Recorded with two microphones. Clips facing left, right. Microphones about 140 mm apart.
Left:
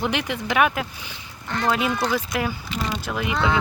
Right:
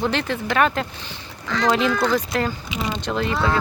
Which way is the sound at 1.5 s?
90° right.